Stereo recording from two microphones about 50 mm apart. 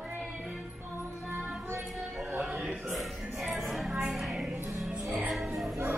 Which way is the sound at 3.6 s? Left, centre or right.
Centre.